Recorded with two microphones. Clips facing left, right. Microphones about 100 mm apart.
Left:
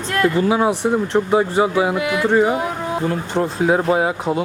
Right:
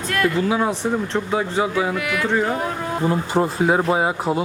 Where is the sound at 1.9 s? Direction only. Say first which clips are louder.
Left 5 dB; 20° left (ahead or behind).